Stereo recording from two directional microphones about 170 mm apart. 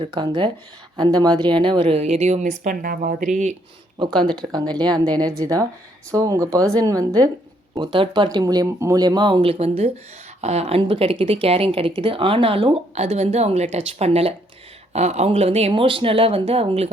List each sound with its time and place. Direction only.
0.1 s speech: 25° right (ahead or behind); by 3.2 s 55° right (ahead or behind)
4.4 s speech: 25° right (ahead or behind)